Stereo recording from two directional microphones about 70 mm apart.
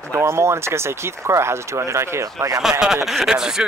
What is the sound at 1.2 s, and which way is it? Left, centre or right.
Speech, right.